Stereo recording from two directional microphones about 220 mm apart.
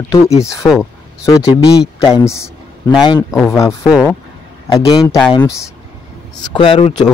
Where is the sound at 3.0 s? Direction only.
20° left (ahead or behind).